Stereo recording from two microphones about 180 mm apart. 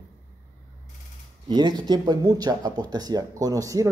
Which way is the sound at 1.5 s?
25° right (ahead or behind).